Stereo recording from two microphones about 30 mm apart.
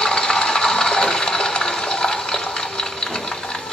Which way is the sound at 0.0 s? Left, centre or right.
Left.